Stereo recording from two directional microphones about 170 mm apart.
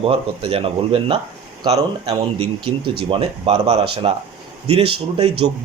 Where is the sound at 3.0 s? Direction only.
35° right (ahead or behind).